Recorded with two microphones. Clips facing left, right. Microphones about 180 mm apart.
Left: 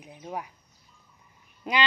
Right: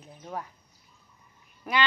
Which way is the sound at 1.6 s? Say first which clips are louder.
Even; 20° left (ahead or behind).